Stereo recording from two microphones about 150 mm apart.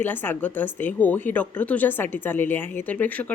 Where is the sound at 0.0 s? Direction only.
15° left (ahead or behind).